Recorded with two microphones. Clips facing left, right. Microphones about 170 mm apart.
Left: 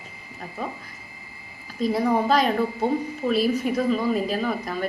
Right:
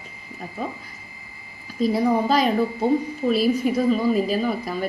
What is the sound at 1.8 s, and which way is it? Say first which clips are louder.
A woman's voice: right 2 dB; centre (ahead or behind).